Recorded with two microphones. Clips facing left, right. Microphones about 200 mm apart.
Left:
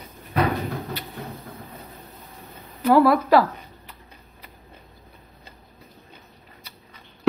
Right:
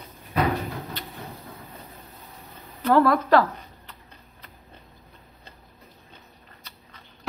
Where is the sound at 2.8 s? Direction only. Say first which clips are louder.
Left 3 dB; 10° left (ahead or behind).